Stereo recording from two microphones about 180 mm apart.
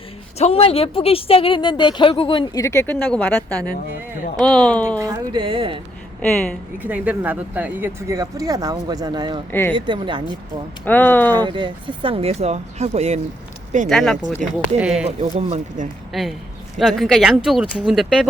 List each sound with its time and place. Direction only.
0.3 s speech: 35° left (ahead or behind); by 4.9 s 5° left (ahead or behind)
4.9 s speech: 20° right (ahead or behind)
5.4 s speech: 30° right (ahead or behind)
6.8 s speech: 5° right (ahead or behind); by 9.4 s 25° right (ahead or behind)
9.5 s speech: 10° left (ahead or behind)
9.7 s a woman's voice: 25° right (ahead or behind)
10.8 s speech: 10° left (ahead or behind)
11.3 s speech: 25° right (ahead or behind)
13.8 s speech: centre (ahead or behind)
14.4 s speech: 45° right (ahead or behind)
14.8 s speech: 5° right (ahead or behind)
15.2 s speech: 35° right (ahead or behind)
16.1 s speech: centre (ahead or behind)